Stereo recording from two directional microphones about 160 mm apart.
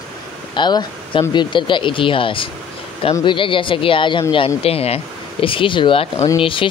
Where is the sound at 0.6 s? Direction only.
30° left (ahead or behind).